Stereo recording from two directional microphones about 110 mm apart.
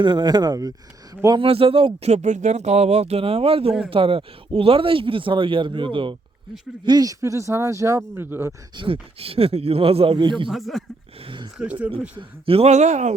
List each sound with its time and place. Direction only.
0.0 s speech: 40° right (ahead or behind)
1.4 s speech: 55° right (ahead or behind)
6.8 s speech: 35° right (ahead or behind); by 8.5 s 20° right (ahead or behind)
8.7 s speech: 50° right (ahead or behind)
10.5 s speech: centre (ahead or behind)
11.5 s speech: 10° right (ahead or behind)
12.5 s speech: 75° right (ahead or behind)